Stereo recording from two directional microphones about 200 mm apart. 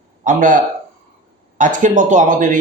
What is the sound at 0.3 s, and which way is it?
Speech, 40° right (ahead or behind).